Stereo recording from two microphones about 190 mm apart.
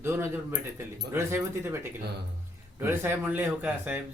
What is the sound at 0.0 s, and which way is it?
Speech, 15° right (ahead or behind).